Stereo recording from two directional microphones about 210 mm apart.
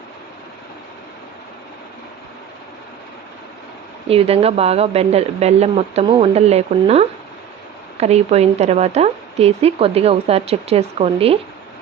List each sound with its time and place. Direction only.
4.1 s a woman's voice: 30° right (ahead or behind)